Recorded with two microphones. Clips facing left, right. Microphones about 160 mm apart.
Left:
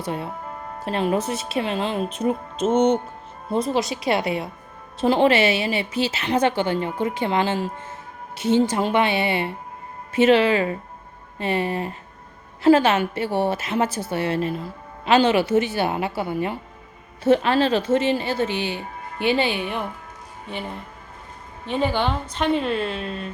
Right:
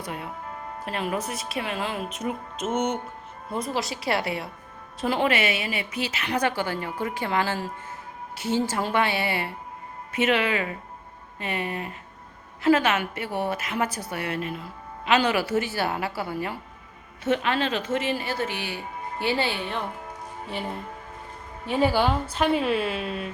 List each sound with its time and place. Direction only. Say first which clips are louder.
0.0 s a woman's voice: left 6 dB; 30° left (ahead or behind)
17.2 s a woman's voice: left 7 dB; 35° left (ahead or behind); by 19.8 s 15° left (ahead or behind)
21.7 s a woman's voice: even; 10° right (ahead or behind)